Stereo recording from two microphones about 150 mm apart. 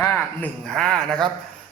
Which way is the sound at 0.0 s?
15° left (ahead or behind).